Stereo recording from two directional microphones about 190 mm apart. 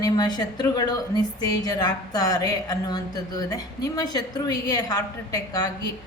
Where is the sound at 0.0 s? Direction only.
20° left (ahead or behind).